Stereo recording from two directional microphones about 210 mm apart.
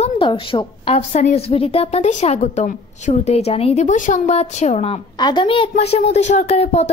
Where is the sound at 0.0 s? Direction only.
25° left (ahead or behind).